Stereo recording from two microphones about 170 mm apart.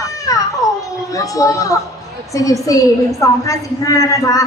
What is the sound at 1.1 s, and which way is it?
A woman's voice, 20° left (ahead or behind).